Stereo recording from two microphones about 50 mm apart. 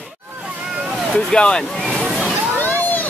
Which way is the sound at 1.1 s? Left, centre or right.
Centre.